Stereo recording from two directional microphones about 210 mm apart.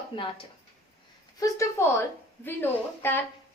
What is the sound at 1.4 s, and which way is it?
A woman's voice, 15° left (ahead or behind).